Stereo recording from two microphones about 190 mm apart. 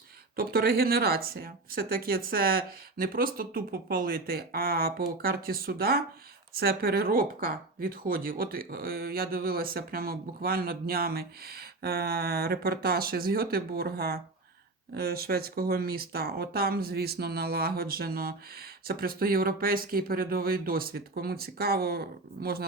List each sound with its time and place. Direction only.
0.3 s speech: 55° right (ahead or behind)